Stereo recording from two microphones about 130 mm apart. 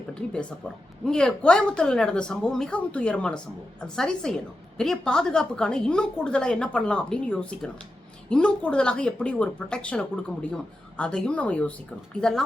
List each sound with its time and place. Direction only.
0.6 s a woman's voice: 10° left (ahead or behind)